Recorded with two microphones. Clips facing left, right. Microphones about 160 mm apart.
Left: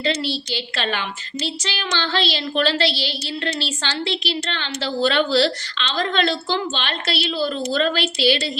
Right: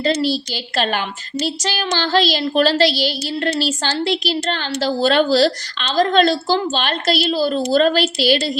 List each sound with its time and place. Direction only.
0.0 s a woman's voice: 40° right (ahead or behind)